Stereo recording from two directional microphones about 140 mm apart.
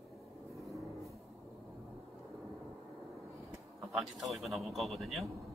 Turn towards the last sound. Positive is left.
turn(degrees=0)  # may be behind; listen again after turning